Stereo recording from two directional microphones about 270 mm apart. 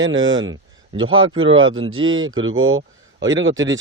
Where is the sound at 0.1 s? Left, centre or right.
Right.